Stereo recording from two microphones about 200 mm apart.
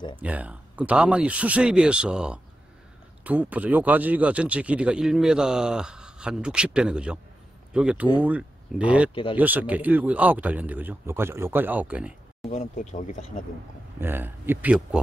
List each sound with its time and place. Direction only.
0.1 s speech: 5° right (ahead or behind)
9.1 s speech: 25° left (ahead or behind)
9.4 s speech: 10° right (ahead or behind)
12.4 s speech: 40° left (ahead or behind)
13.9 s speech: 10° right (ahead or behind)